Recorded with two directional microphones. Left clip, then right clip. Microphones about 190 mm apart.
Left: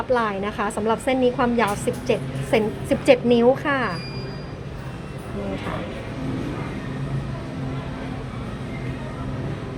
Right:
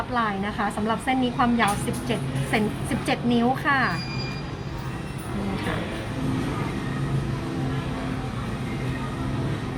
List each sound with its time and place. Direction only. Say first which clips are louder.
0.1 s a woman's voice: left 6 dB; 30° left (ahead or behind)